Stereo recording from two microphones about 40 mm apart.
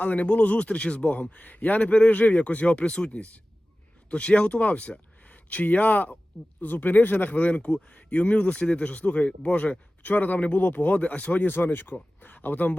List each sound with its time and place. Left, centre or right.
0.0 s speech: left
1.8 s speech: left
6.6 s speech: left
10.9 s speech: left
11.4 s speech: left
12.2 s a sound: left